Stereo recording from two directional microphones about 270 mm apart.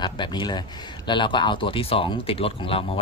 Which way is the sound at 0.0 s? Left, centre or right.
Centre.